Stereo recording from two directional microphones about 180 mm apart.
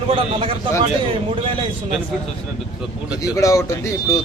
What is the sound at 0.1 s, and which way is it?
Speech, 35° right (ahead or behind).